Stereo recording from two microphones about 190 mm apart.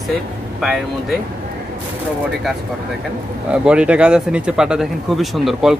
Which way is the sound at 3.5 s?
5° right (ahead or behind).